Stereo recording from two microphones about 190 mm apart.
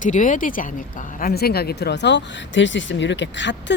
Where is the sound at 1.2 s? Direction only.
55° left (ahead or behind).